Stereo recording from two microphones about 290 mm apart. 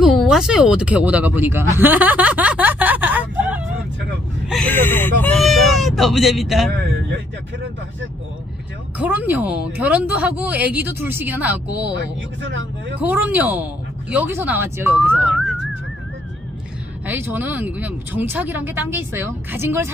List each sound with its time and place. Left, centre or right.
0.0 s speech: centre
8.9 s a woman's voice: centre
12.4 s speech: right
13.0 s a woman's voice: centre
17.0 s speech: centre